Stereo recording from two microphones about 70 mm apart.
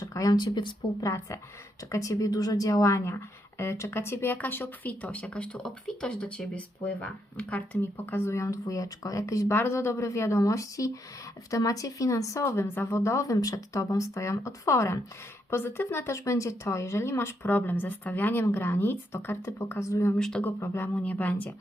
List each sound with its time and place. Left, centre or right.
0.0 s a sound: left
0.3 s speech: left
1.9 s speech: left; by 7.8 s centre
7.8 s speech: left
8.4 s speech: left
15.4 s speech: left
20.1 s speech: centre
20.4 s speech: left
20.9 s speech: centre